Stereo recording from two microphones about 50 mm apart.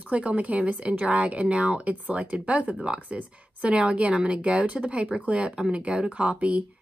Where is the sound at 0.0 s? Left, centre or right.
Right.